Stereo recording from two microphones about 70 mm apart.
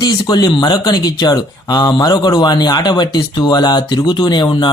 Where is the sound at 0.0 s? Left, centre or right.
Left.